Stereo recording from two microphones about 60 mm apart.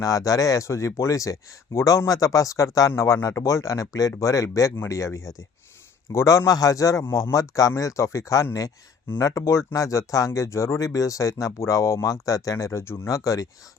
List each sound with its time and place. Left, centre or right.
0.0 s speech: left
2.9 s speech: left
7.0 s speech: left
11.6 s speech: left
13.1 s speech: left